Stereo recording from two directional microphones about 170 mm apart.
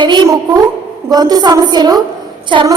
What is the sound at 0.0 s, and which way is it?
A woman's voice, 25° right (ahead or behind).